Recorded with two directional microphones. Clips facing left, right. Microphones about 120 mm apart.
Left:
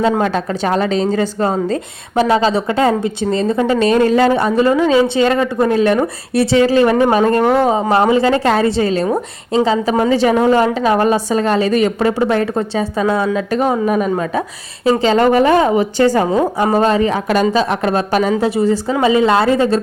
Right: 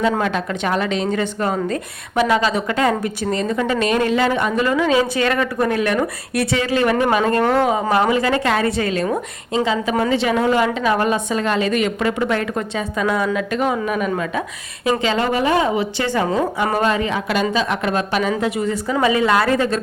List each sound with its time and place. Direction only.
0.2 s a woman's voice: 35° left (ahead or behind)
10.1 s a woman's voice: 40° left (ahead or behind)